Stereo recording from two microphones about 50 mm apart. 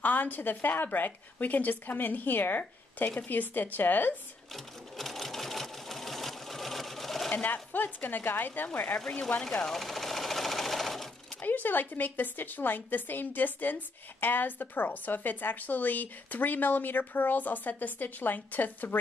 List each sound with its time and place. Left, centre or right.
0.0 s a woman's voice: left
4.9 s sewing machine: centre
7.4 s a woman's voice: left
9.7 s sewing machine: centre
11.4 s a woman's voice: left